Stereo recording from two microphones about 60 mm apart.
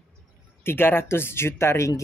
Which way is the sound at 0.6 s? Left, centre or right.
Left.